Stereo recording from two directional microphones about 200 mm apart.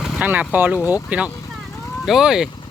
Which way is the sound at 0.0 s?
5° right (ahead or behind).